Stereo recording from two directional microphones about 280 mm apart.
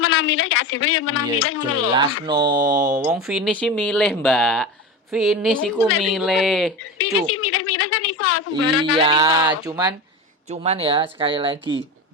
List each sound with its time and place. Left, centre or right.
0.0 s speech: left
2.2 s speech: centre
7.0 s a sound: left
8.5 s speech: centre